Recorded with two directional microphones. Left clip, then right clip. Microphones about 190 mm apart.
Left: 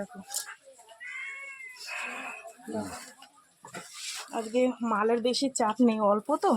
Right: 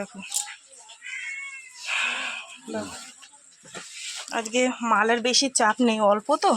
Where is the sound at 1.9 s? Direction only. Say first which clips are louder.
Right 11 dB; 10° right (ahead or behind).